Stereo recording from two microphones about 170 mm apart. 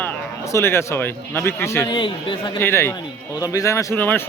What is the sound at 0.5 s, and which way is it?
Speech, 15° left (ahead or behind).